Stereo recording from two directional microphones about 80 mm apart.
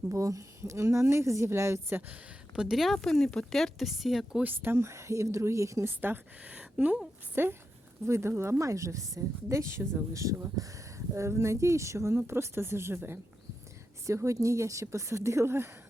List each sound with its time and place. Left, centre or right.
0.1 s speech: right
2.6 s a woman's voice: centre
4.4 s speech: right
7.4 s a woman's voice: right
14.1 s speech: right